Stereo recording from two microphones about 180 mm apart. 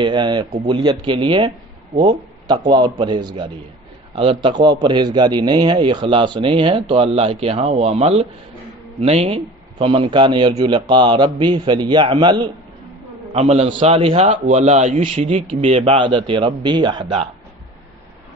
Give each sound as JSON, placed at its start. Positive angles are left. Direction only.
{"t": 0.0, "sound": "a man's voice", "side_deg": -25}
{"t": 13.3, "sound": "a man's voice", "side_deg": -35}
{"t": 15.3, "sound": "a man's voice", "side_deg": -30}